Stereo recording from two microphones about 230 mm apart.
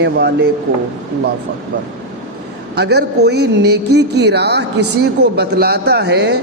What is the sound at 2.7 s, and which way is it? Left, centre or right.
A woman's voice, right.